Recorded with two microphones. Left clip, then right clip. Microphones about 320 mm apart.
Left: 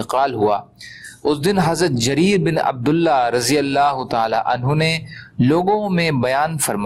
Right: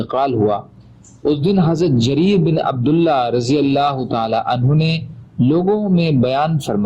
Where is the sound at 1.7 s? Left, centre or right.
Centre.